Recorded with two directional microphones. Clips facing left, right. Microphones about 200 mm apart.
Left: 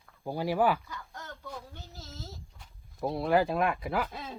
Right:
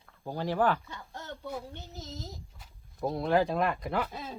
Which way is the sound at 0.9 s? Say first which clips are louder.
Right 2 dB; 30° right (ahead or behind).